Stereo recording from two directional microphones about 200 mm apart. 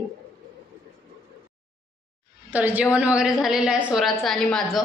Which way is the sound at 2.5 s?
10° right (ahead or behind).